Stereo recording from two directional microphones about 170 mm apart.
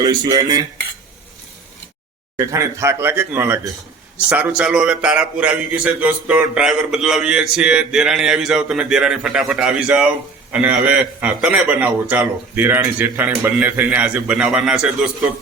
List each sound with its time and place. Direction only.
0.0 s speech: 20° right (ahead or behind)
2.3 s a man's voice: 20° right (ahead or behind)